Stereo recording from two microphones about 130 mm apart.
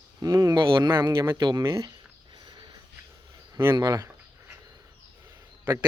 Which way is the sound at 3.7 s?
30° right (ahead or behind).